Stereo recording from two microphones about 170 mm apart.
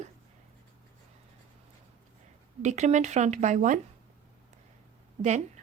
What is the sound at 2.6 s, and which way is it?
Speech, 45° right (ahead or behind).